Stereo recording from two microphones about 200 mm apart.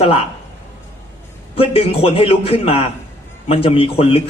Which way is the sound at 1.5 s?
30° left (ahead or behind).